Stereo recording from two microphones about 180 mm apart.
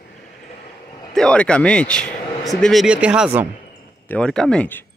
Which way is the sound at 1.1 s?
5° left (ahead or behind).